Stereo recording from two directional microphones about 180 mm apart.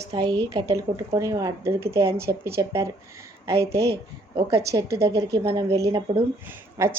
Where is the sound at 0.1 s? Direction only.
20° right (ahead or behind).